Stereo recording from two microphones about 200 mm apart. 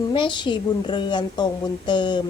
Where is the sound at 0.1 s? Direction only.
25° left (ahead or behind).